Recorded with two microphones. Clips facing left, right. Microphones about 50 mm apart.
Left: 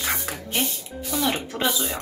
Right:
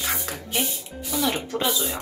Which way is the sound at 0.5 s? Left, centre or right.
Centre.